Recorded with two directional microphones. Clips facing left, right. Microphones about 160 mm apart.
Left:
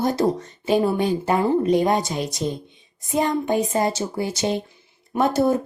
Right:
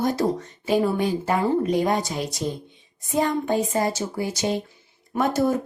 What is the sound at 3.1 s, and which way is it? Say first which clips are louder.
Speech: left 1 dB; 20° left (ahead or behind).